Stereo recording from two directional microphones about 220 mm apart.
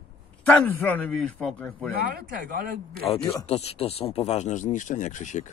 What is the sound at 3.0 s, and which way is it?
Speech, 25° left (ahead or behind).